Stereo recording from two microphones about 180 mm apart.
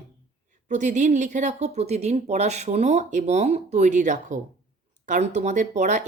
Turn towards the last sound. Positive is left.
turn(degrees=-40)  # may be behind; listen again after turning